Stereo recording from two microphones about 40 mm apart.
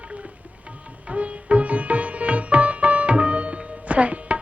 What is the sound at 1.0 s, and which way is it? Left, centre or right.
Music, right.